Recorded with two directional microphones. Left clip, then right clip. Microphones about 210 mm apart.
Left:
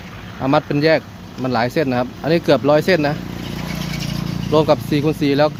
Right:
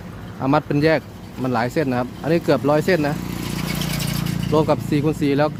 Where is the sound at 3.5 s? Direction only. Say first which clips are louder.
Right 1 dB; 50° right (ahead or behind).